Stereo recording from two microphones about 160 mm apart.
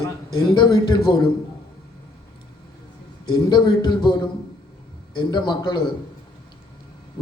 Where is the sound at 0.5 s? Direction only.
30° left (ahead or behind).